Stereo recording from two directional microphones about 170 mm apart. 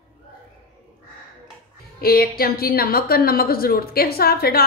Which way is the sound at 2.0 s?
65° left (ahead or behind).